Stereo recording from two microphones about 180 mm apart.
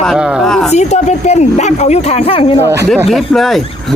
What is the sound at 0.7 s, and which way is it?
Speech, 40° left (ahead or behind).